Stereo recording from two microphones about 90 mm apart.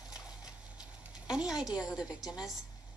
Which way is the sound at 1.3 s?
10° right (ahead or behind).